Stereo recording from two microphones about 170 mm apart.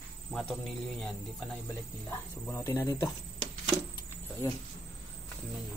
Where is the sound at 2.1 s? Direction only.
15° left (ahead or behind).